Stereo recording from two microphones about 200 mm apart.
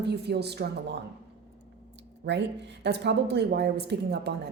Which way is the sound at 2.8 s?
60° right (ahead or behind).